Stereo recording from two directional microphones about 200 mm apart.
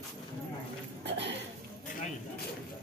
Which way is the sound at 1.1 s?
60° right (ahead or behind).